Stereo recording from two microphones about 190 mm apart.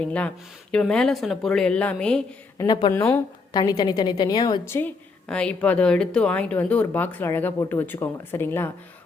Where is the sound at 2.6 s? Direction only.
20° left (ahead or behind).